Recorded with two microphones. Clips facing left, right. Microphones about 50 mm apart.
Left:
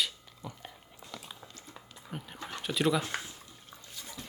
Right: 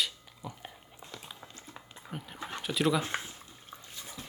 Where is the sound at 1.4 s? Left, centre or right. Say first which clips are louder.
Right 1 dB; right.